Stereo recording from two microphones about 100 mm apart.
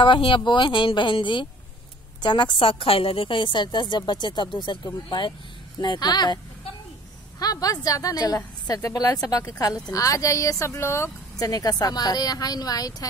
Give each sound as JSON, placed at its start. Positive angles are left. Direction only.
{"t": 0.0, "sound": "a woman's voice", "side_deg": 55}
{"t": 11.4, "sound": "a woman's voice", "side_deg": 40}